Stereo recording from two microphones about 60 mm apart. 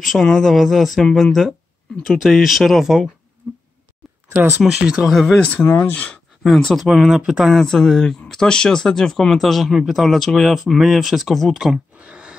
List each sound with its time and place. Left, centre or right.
0.0 s speech: centre
3.4 s a sound: right
4.6 s speech: centre
5.3 s speech: left
5.6 s speech: left
6.7 s speech: centre
7.6 s speech: centre
12.0 s a sound: right